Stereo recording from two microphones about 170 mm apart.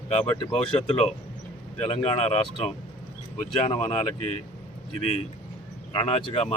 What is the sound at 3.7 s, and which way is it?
Speech, 40° left (ahead or behind).